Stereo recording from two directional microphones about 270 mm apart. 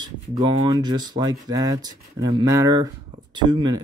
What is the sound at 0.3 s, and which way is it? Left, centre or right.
Cattle, centre.